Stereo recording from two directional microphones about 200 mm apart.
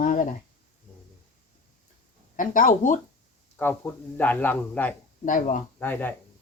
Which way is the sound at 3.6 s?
10° left (ahead or behind).